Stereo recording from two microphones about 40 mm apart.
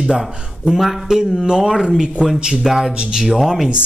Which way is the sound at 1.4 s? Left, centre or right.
Centre.